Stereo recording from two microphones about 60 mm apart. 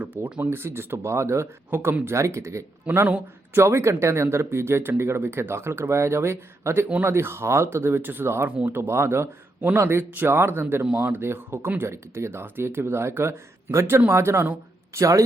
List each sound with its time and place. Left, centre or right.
0.1 s speech: right
2.8 s a man's voice: right
8.9 s a man's voice: right
14.9 s speech: right